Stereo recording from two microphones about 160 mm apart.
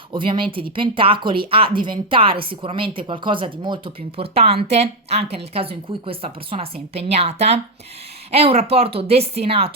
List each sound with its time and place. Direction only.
0.1 s speech: 30° right (ahead or behind)